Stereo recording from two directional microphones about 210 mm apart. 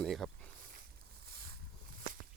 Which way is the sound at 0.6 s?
40° right (ahead or behind).